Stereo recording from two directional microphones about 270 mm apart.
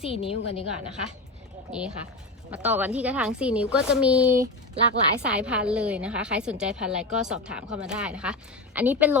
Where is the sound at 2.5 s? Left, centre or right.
Centre.